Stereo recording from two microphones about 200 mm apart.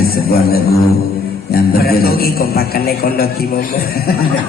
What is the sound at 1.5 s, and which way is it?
A man's voice, 50° left (ahead or behind).